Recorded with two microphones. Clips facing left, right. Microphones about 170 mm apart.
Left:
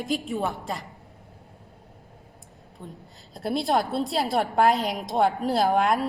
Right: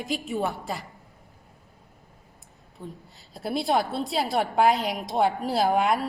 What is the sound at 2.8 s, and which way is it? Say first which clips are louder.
A woman's voice: right 2 dB; centre (ahead or behind).